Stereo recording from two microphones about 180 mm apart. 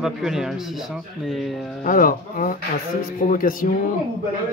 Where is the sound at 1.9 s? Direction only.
50° left (ahead or behind).